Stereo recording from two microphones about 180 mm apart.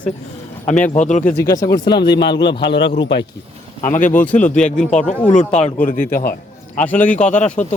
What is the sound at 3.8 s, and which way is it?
Speech, 45° left (ahead or behind).